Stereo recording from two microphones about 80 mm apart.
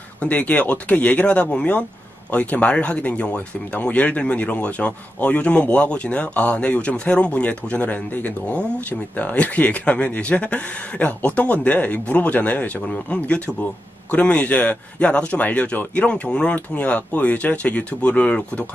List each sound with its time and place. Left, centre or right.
0.2 s speech: centre